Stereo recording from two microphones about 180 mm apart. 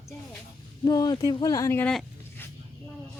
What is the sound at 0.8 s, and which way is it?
Speech, 25° left (ahead or behind).